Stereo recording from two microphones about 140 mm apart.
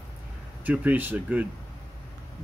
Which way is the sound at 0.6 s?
10° right (ahead or behind).